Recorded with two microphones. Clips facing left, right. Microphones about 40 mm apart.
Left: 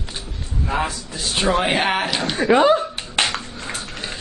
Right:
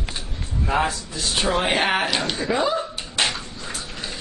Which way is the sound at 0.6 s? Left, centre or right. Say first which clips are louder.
Right 1 dB; centre.